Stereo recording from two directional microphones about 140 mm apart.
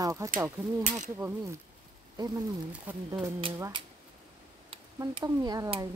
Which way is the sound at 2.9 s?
10° right (ahead or behind).